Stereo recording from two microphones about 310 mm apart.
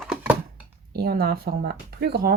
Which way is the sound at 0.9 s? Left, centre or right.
Right.